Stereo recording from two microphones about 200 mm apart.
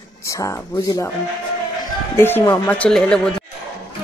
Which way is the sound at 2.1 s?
15° left (ahead or behind).